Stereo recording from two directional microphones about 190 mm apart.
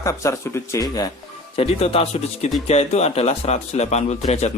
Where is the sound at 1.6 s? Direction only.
30° left (ahead or behind).